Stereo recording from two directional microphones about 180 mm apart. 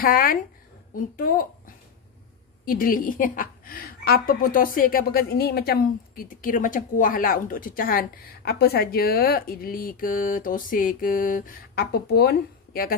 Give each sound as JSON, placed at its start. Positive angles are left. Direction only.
{"t": 0.0, "sound": "a woman's voice", "side_deg": 50}